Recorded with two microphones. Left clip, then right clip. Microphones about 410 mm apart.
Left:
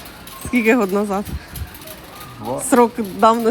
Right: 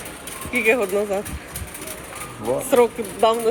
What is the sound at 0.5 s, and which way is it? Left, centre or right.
Speech, left.